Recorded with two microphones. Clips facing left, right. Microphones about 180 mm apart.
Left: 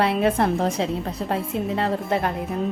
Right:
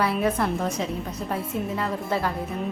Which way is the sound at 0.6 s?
30° left (ahead or behind).